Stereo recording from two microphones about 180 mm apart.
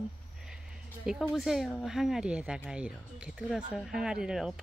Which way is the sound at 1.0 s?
Centre (ahead or behind).